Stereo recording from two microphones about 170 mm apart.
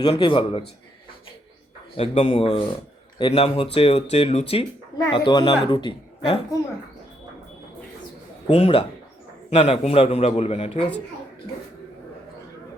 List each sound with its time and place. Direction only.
0.0 s speech: 25° left (ahead or behind)
2.0 s a man's voice: 35° left (ahead or behind)
8.4 s a man's voice: 30° left (ahead or behind)